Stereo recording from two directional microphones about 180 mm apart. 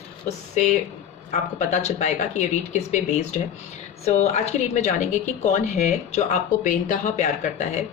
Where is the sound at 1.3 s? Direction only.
40° left (ahead or behind).